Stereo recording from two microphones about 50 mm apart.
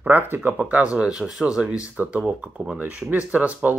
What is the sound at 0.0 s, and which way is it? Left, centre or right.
Speech, right.